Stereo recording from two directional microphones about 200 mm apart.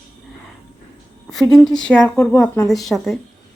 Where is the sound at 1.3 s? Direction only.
Centre (ahead or behind).